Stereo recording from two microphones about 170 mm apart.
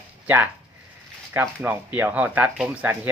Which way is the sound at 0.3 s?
10° right (ahead or behind).